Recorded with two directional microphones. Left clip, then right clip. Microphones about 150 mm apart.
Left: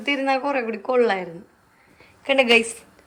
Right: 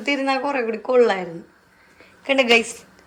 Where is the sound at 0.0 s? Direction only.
5° right (ahead or behind).